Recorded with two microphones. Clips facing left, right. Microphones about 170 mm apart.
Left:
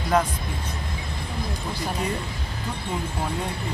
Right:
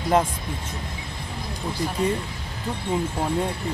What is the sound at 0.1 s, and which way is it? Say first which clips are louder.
Speech: right 1 dB; 25° right (ahead or behind).